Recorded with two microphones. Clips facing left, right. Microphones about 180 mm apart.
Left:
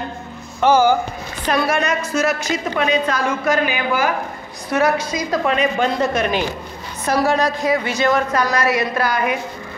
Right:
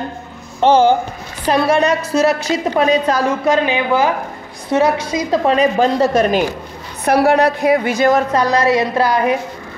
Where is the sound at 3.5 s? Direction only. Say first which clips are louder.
Right 4 dB; 25° right (ahead or behind).